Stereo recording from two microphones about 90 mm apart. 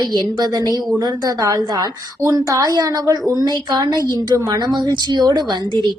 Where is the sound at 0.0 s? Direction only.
50° right (ahead or behind).